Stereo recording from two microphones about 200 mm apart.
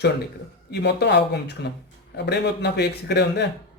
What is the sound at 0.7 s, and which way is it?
Speech, 55° left (ahead or behind).